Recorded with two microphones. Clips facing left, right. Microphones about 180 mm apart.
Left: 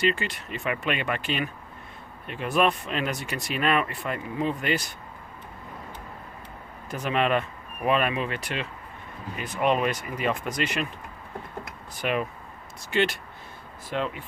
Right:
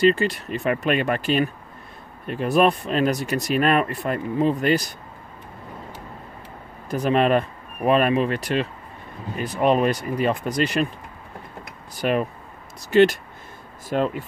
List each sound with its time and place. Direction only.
0.0 s speech: 35° right (ahead or behind)
6.9 s speech: 40° right (ahead or behind)
11.9 s speech: 40° right (ahead or behind)